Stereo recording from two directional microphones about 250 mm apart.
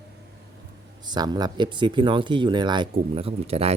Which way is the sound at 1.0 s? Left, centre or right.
Centre.